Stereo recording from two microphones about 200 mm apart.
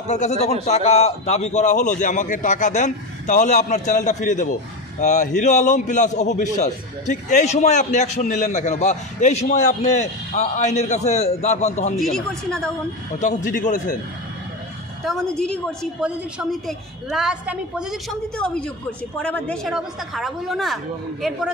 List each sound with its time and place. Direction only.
0.1 s a man's voice: 35° left (ahead or behind)
12.0 s a woman's voice: 5° left (ahead or behind)
13.2 s a man's voice: 40° left (ahead or behind)
15.0 s a woman's voice: 5° left (ahead or behind)